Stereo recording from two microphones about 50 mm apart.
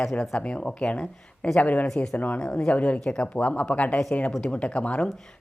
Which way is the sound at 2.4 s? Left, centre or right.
Centre.